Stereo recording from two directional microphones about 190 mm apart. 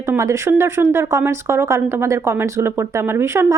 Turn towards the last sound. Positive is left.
turn(degrees=-15)  # may be behind; listen again after turning